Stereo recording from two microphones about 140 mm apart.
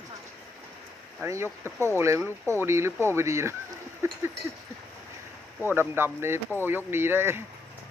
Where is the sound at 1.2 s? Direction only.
20° right (ahead or behind).